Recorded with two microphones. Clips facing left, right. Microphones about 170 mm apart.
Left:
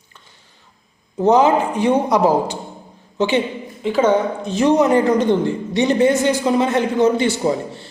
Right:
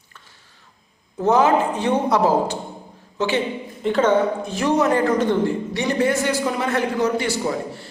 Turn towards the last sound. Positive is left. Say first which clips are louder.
# left 5 dB
turn(degrees=25)  # may be behind; listen again after turning